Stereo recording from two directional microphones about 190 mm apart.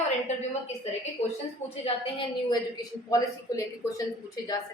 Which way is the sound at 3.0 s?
20° left (ahead or behind).